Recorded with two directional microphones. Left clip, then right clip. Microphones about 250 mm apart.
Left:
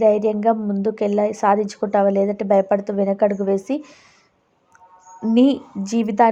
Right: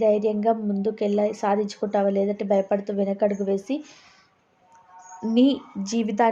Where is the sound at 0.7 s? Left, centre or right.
Centre.